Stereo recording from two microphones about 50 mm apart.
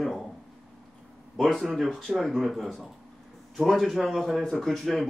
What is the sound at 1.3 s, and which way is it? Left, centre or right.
A man's voice, centre.